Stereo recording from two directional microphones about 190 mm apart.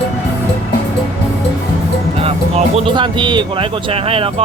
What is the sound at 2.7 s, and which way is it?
Speech, 25° right (ahead or behind).